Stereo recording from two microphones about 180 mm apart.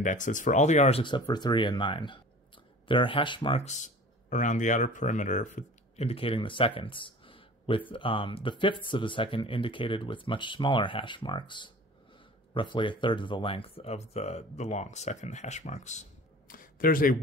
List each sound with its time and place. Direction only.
0.0 s speech: 45° left (ahead or behind)